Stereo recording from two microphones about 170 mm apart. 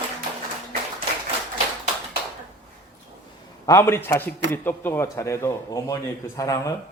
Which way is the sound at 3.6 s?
15° left (ahead or behind).